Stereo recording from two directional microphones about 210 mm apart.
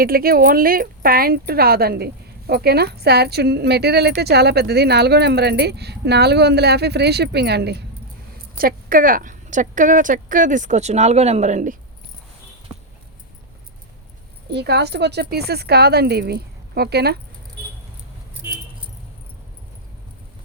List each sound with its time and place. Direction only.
0.0 s speech: 45° right (ahead or behind)
14.5 s speech: 50° right (ahead or behind)